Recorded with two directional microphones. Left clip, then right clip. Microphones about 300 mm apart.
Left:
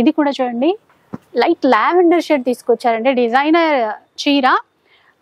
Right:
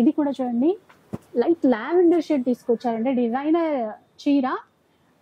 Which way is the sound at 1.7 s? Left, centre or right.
Left.